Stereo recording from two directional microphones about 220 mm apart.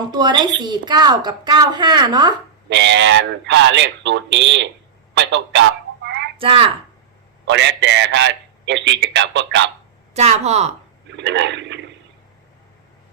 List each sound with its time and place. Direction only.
0.1 s a woman's voice: 20° right (ahead or behind)
2.6 s a man's voice: 55° right (ahead or behind)
6.4 s a woman's voice: 25° right (ahead or behind)
7.4 s a man's voice: 55° right (ahead or behind)
10.2 s a woman's voice: 30° right (ahead or behind)
11.2 s a man's voice: 55° right (ahead or behind)